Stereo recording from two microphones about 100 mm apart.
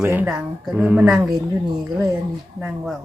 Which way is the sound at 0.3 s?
5° right (ahead or behind).